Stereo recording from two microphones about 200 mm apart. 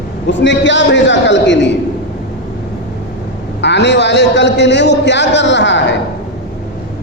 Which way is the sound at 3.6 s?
60° left (ahead or behind).